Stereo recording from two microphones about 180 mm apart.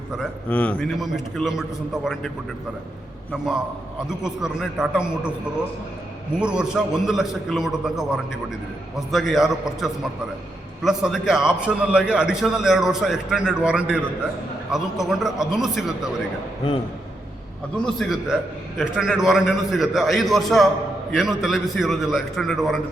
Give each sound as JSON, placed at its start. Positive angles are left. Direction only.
{"t": 0.2, "sound": "a man's voice", "side_deg": 5}
{"t": 4.2, "sound": "a man's voice", "side_deg": -5}
{"t": 6.4, "sound": "a man's voice", "side_deg": -5}
{"t": 17.9, "sound": "a man's voice", "side_deg": 0}